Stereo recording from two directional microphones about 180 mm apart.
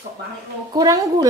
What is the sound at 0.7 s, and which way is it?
Speech, 20° right (ahead or behind).